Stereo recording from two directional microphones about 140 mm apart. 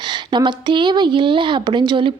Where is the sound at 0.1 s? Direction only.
30° right (ahead or behind).